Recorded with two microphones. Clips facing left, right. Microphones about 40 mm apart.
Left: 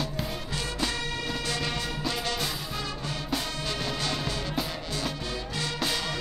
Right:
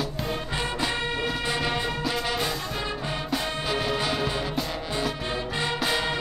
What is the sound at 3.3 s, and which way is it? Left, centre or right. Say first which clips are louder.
Music: right 4 dB; centre.